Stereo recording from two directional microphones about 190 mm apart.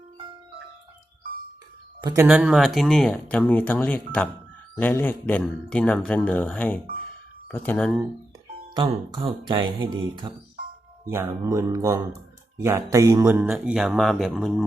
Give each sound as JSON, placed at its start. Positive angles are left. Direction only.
{"t": 2.0, "sound": "a man's voice", "side_deg": -20}
{"t": 2.2, "sound": "speech", "side_deg": -5}
{"t": 8.7, "sound": "speech", "side_deg": -25}